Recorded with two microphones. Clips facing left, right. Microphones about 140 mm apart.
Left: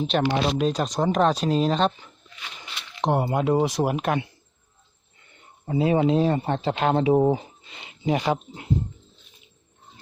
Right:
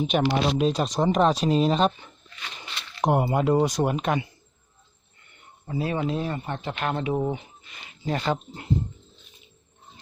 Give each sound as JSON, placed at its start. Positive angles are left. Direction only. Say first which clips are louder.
{"t": 0.1, "sound": "speech", "louder": "left 1 dB", "side_deg": -10}
{"t": 2.6, "sound": "a sound", "louder": "right 1 dB", "side_deg": 10}
{"t": 3.0, "sound": "speech", "louder": "right 1 dB", "side_deg": -5}
{"t": 5.6, "sound": "speech", "louder": "left 6 dB", "side_deg": 25}